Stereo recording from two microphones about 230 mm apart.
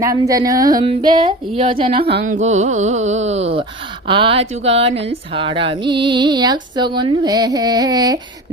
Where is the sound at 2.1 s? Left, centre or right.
Right.